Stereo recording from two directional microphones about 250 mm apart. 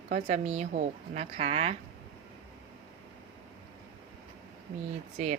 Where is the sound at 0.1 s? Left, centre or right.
Right.